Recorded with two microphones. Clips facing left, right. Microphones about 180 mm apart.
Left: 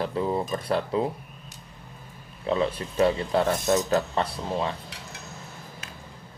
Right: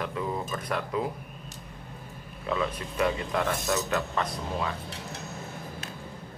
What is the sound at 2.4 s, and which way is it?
A man's voice, 30° left (ahead or behind).